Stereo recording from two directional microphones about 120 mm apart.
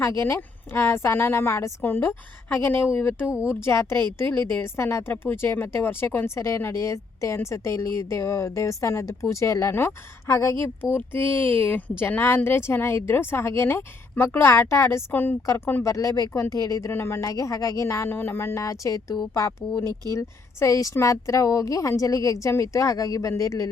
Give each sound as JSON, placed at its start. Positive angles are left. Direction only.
{"t": 0.2, "sound": "a woman's voice", "side_deg": 20}